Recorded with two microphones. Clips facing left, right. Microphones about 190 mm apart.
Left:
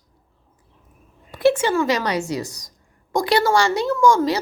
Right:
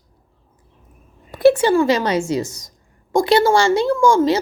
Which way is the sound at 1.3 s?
40° right (ahead or behind).